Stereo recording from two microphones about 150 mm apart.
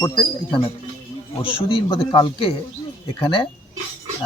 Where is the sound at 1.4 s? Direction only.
35° left (ahead or behind).